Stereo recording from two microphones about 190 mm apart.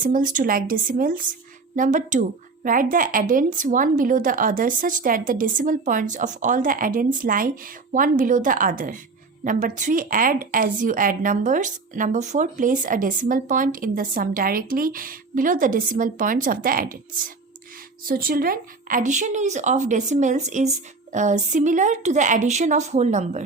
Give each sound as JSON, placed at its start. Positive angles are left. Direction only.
{"t": 0.0, "sound": "a woman's voice", "side_deg": -45}